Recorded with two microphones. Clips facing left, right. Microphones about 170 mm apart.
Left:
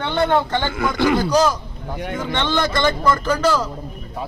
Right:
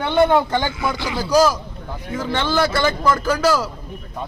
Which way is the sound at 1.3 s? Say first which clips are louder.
Right 2 dB; 10° right (ahead or behind).